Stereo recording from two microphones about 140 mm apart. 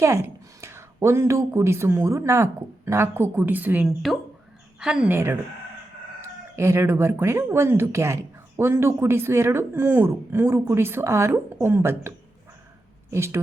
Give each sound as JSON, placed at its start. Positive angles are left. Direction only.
{"t": 0.0, "sound": "speech", "side_deg": -20}
{"t": 3.8, "sound": "speech", "side_deg": 0}
{"t": 6.6, "sound": "a woman's voice", "side_deg": -20}